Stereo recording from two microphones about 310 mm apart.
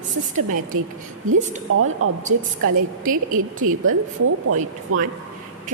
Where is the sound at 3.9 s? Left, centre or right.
Right.